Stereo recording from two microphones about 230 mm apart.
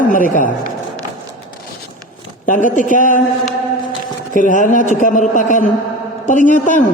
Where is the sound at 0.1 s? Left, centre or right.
Left.